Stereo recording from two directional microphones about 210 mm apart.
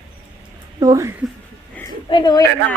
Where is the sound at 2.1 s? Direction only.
20° left (ahead or behind).